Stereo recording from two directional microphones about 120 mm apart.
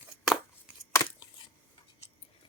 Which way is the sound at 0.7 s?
15° right (ahead or behind).